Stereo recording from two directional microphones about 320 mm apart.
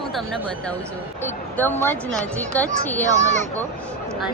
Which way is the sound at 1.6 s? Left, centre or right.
Centre.